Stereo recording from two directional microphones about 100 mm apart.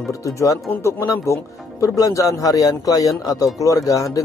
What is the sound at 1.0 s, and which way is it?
Speech, 30° left (ahead or behind).